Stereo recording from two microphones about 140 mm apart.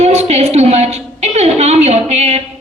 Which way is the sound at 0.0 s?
50° right (ahead or behind).